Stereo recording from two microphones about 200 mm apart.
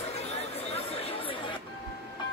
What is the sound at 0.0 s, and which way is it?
Chatter, 30° left (ahead or behind).